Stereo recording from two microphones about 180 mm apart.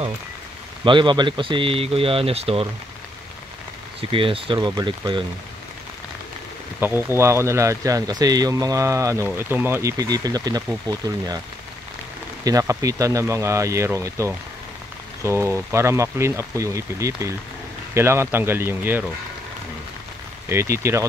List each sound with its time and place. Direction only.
0.8 s speech: 25° right (ahead or behind)
4.1 s speech: 30° right (ahead or behind)
6.8 s speech: 10° right (ahead or behind)
12.4 s speech: 20° right (ahead or behind)
20.4 s speech: 15° right (ahead or behind)